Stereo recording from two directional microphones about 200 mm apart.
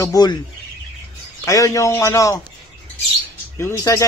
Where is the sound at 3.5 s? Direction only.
10° left (ahead or behind).